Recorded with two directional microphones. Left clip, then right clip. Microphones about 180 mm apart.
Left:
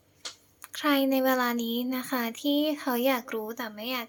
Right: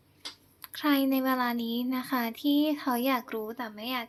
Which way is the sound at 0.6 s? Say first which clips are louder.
Left 2 dB; 5° left (ahead or behind).